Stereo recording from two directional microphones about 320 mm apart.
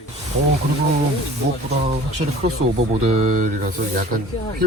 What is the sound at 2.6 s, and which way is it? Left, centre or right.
Speech, centre.